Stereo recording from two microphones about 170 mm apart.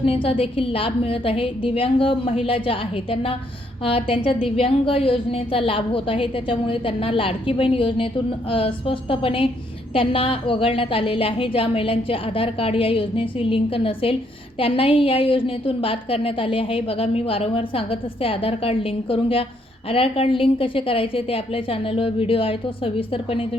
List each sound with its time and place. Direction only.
0.0 s a woman's voice: 35° left (ahead or behind)